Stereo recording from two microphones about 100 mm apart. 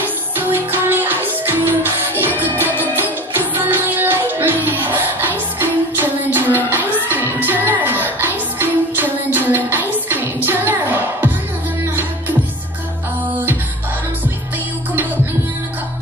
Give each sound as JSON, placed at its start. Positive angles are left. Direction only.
{"t": 0.4, "sound": "music", "side_deg": -20}